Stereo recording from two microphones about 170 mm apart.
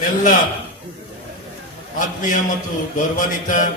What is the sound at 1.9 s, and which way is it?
A man's voice, 50° left (ahead or behind).